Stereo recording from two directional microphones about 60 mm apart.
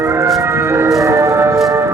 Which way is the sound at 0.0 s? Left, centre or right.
Right.